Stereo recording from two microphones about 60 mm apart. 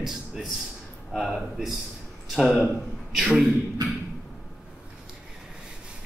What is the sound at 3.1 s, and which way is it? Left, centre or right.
Speech, centre.